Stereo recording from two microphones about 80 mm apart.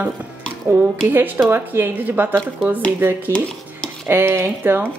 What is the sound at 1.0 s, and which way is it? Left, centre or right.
Speech, right.